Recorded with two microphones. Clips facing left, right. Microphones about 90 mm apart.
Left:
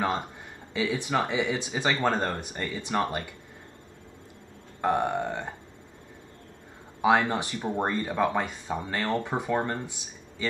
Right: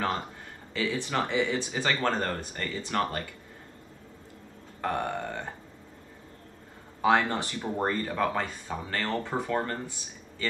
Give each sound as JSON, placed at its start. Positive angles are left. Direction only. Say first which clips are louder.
{"t": 0.7, "sound": "speech", "louder": "left 2 dB", "side_deg": 15}
{"t": 4.8, "sound": "speech", "louder": "left 5 dB", "side_deg": 20}
{"t": 7.0, "sound": "speech", "louder": "left 1 dB", "side_deg": 15}